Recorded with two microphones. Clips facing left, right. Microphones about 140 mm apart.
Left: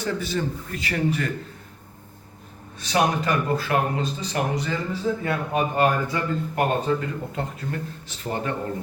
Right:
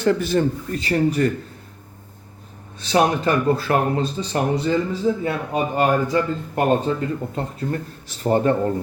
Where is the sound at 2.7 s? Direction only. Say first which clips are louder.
Right 4 dB; 30° right (ahead or behind).